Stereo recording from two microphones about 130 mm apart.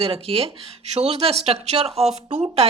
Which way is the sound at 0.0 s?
45° right (ahead or behind).